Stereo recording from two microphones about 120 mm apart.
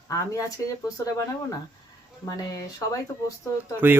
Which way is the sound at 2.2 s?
25° left (ahead or behind).